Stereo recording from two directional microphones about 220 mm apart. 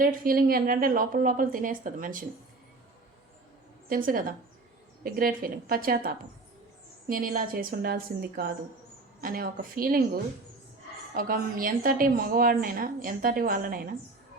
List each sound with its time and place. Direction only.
0.0 s a woman's voice: 40° right (ahead or behind)
3.8 s a woman's voice: 40° right (ahead or behind)
11.1 s a woman's voice: 40° right (ahead or behind)